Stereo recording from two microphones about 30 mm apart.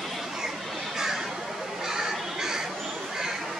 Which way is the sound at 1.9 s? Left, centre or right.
Centre.